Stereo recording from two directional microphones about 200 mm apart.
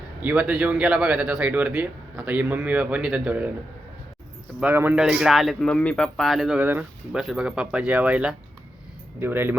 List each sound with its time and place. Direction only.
0.2 s speech: 5° right (ahead or behind)
4.6 s speech: 10° right (ahead or behind)